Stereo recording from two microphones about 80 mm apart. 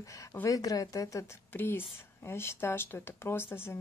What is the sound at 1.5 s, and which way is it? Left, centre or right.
Speech, left.